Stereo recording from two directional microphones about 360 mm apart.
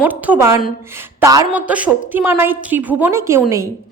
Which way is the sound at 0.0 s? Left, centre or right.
Centre.